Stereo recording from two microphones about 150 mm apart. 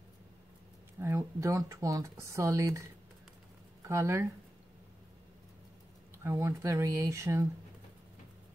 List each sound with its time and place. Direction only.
0.9 s speech: 20° right (ahead or behind)
3.8 s speech: 20° right (ahead or behind)
6.1 s speech: 15° right (ahead or behind)